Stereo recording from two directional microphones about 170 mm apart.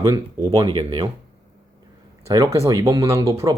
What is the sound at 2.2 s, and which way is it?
Speech, 20° right (ahead or behind).